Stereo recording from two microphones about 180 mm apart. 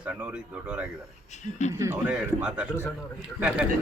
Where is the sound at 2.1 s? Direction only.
5° right (ahead or behind).